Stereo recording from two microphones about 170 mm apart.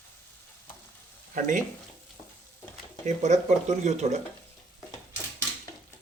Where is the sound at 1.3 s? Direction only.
50° right (ahead or behind).